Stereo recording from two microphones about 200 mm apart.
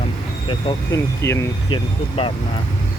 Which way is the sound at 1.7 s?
25° left (ahead or behind).